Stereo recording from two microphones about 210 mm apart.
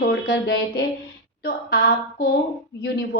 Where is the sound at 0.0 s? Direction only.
55° left (ahead or behind).